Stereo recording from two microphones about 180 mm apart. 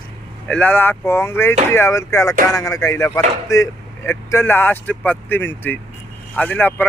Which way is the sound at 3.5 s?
15° left (ahead or behind).